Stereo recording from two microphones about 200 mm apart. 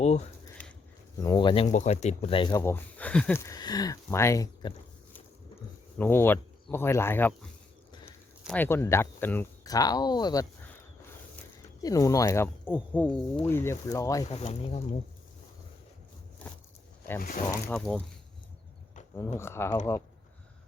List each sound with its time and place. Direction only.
1.2 s speech: 20° left (ahead or behind)
1.6 s speech: 35° left (ahead or behind); by 4.7 s 15° left (ahead or behind)
6.0 s speech: 10° left (ahead or behind)
8.4 s speech: 10° left (ahead or behind)
11.8 s speech: 15° left (ahead or behind)
14.3 s speech: 30° left (ahead or behind)
17.2 s speech: 45° left (ahead or behind)
17.4 s speech: 15° left (ahead or behind)
17.7 s speech: 5° left (ahead or behind)
19.4 s speech: 15° left (ahead or behind)